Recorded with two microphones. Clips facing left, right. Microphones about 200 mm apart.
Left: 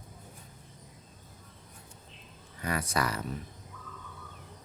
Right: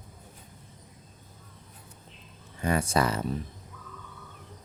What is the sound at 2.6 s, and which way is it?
Speech, 25° right (ahead or behind).